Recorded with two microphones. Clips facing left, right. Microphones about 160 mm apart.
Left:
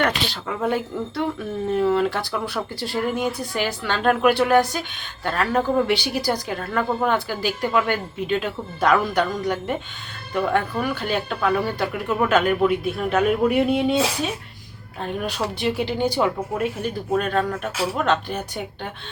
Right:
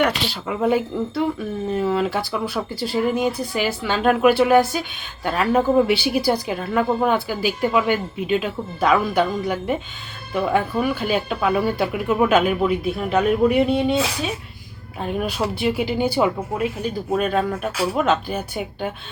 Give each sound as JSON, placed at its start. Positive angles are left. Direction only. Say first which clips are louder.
{"t": 0.0, "sound": "a woman's voice", "louder": "right 2 dB", "side_deg": -10}
{"t": 15.0, "sound": "a woman's voice", "louder": "right 3 dB", "side_deg": -10}